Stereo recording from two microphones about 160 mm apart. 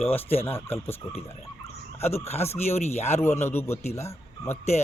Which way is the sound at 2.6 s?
40° left (ahead or behind).